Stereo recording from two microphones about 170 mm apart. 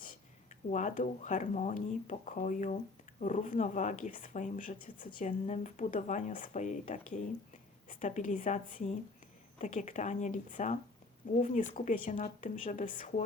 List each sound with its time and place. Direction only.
0.7 s speech: 45° left (ahead or behind)